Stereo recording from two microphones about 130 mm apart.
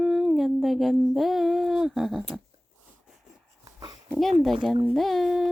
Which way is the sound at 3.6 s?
30° right (ahead or behind).